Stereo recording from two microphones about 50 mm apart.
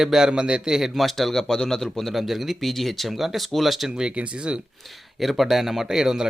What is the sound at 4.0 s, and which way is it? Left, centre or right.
Speech, right.